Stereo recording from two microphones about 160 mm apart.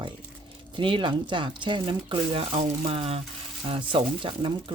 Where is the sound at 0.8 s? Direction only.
30° right (ahead or behind).